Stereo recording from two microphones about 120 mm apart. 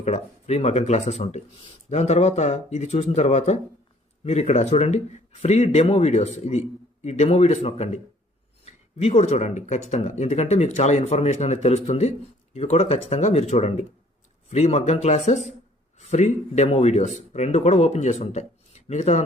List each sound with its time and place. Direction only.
0.0 s speech: 65° left (ahead or behind)
14.5 s speech: 70° left (ahead or behind)